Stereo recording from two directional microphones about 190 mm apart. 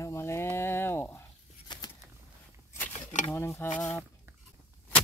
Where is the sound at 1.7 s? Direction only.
25° left (ahead or behind).